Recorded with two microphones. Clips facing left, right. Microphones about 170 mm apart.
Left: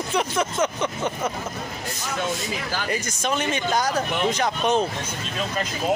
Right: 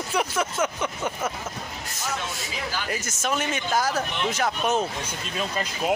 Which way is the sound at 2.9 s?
5° right (ahead or behind).